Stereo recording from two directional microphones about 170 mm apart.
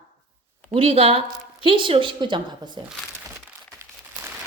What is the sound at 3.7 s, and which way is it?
Crumpling, 15° right (ahead or behind).